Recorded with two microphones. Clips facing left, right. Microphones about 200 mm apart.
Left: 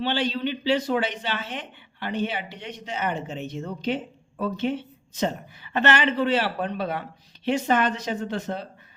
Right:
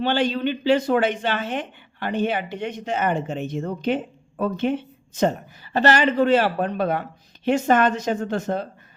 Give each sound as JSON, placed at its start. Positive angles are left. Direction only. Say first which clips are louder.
{"t": 0.0, "sound": "speech", "louder": "right 4 dB", "side_deg": -50}
{"t": 5.7, "sound": "speech", "louder": "right 4 dB", "side_deg": -35}